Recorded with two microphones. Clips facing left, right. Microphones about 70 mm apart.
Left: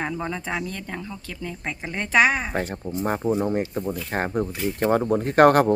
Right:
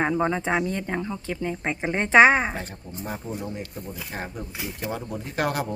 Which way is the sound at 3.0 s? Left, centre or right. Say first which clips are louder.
Left 9 dB; left.